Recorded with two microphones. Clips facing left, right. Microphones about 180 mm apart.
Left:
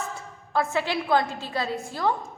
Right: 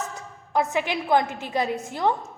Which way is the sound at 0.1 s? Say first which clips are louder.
Right 1 dB; 20° right (ahead or behind).